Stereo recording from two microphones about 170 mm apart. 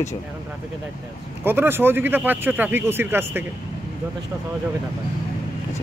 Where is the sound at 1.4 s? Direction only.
10° right (ahead or behind).